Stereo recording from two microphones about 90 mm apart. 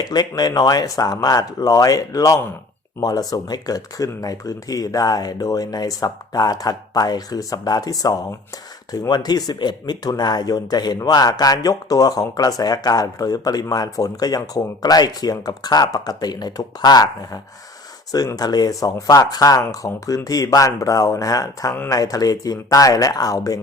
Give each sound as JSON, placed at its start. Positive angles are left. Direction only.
{"t": 0.0, "sound": "speech", "side_deg": 50}